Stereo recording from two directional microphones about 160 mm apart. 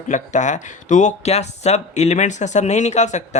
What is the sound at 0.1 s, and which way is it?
Speech, 50° left (ahead or behind).